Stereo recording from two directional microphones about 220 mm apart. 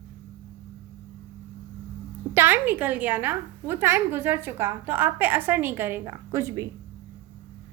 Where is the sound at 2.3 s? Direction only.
10° right (ahead or behind).